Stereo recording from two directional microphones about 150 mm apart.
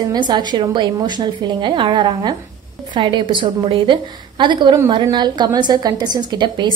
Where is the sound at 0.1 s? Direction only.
30° right (ahead or behind).